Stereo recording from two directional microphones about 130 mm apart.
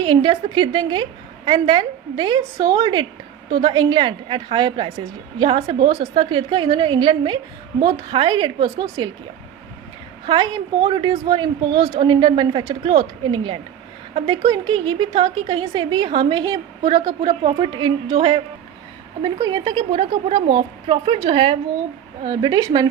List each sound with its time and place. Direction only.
0.0 s a woman's voice: 40° right (ahead or behind)
10.2 s a woman's voice: 35° right (ahead or behind)